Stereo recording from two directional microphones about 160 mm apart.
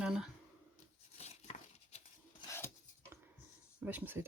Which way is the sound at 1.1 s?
40° left (ahead or behind).